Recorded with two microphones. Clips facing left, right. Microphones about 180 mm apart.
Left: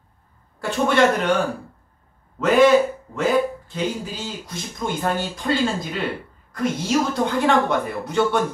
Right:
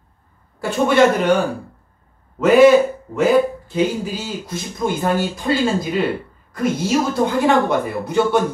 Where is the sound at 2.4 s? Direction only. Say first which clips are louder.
Right 4 dB; 5° right (ahead or behind).